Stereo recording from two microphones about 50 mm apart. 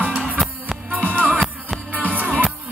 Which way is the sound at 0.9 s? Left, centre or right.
Right.